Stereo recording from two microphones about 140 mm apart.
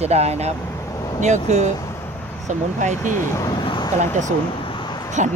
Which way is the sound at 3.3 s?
25° left (ahead or behind).